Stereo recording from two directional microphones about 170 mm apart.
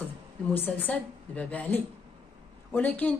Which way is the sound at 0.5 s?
10° left (ahead or behind).